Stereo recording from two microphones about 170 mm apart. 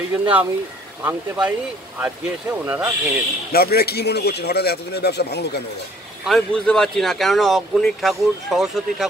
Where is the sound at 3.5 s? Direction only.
65° left (ahead or behind).